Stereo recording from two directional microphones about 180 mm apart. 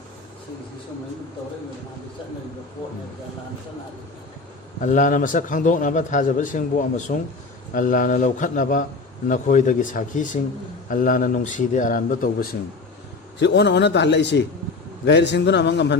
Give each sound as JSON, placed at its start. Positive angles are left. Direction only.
{"t": 4.8, "sound": "a man's voice", "side_deg": 45}
{"t": 13.4, "sound": "a man's voice", "side_deg": 70}